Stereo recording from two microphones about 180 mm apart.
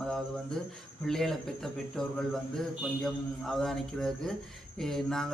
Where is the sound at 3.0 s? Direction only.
Centre (ahead or behind).